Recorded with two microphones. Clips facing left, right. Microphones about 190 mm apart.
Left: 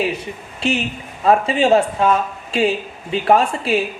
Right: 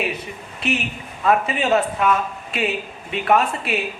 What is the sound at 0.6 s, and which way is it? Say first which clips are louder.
Speech: left 3 dB; 30° left (ahead or behind).